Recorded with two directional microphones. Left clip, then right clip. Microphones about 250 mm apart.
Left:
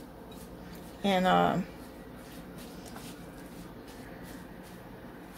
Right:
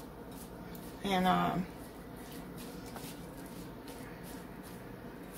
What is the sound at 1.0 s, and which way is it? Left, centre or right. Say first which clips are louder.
Speech: left 5 dB; left.